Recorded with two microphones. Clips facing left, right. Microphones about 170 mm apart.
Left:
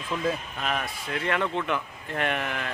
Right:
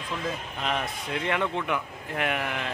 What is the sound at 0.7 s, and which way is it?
A man's voice, 20° right (ahead or behind).